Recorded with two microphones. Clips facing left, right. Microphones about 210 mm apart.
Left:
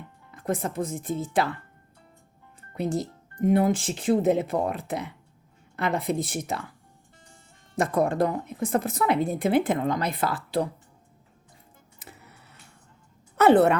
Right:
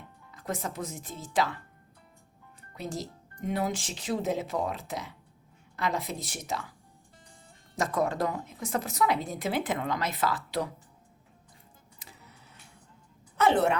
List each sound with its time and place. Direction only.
0.3 s speech: 55° left (ahead or behind)
2.7 s a woman's voice: 60° left (ahead or behind)
6.0 s speech: centre (ahead or behind)
6.2 s speech: 55° left (ahead or behind)
7.8 s speech: 55° left (ahead or behind)
8.4 s speech: centre (ahead or behind)
8.6 s speech: 55° left (ahead or behind)
11.9 s a sound: 60° left (ahead or behind)
13.4 s a woman's voice: 60° left (ahead or behind)